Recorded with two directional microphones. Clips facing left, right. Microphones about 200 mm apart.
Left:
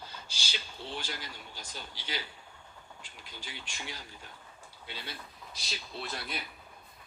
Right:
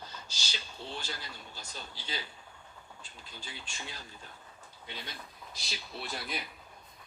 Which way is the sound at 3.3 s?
10° left (ahead or behind).